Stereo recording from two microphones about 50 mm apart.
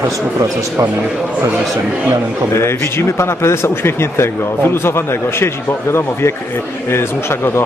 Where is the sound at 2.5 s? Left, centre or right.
Left.